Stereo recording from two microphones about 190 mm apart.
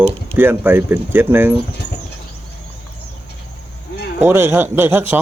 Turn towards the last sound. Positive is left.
turn(degrees=-10)  # may be behind; listen again after turning